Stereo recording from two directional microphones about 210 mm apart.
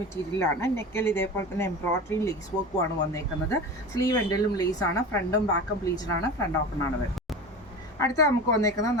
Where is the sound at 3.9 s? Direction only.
15° left (ahead or behind).